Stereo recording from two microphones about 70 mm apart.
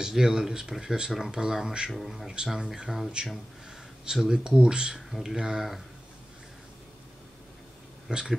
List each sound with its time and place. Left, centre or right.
0.0 s speech: centre
8.1 s speech: centre